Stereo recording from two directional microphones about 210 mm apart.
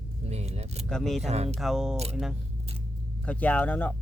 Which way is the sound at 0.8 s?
5° left (ahead or behind).